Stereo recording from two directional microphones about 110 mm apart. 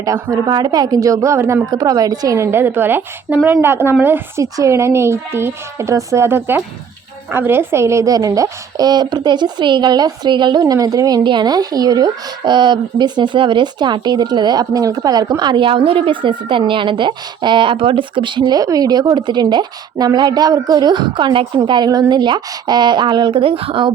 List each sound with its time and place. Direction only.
0.0 s a woman's voice: 35° right (ahead or behind); by 23.9 s 55° right (ahead or behind)